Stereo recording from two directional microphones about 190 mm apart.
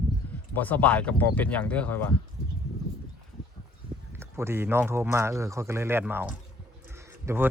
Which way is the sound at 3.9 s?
5° right (ahead or behind).